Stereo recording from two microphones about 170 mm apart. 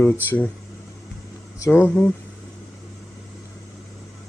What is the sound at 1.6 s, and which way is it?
Speech, 10° left (ahead or behind).